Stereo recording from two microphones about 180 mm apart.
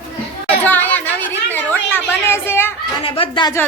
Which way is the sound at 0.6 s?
10° left (ahead or behind).